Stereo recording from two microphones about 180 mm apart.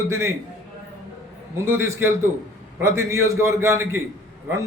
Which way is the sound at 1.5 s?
15° right (ahead or behind).